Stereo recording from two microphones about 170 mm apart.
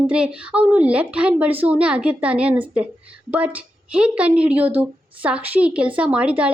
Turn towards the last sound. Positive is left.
turn(degrees=-5)  # may be behind; listen again after turning